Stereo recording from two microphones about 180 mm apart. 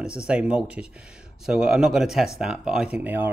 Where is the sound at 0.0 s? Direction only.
5° right (ahead or behind).